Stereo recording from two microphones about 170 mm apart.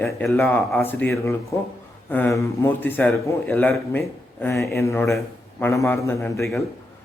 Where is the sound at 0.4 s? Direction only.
Centre (ahead or behind).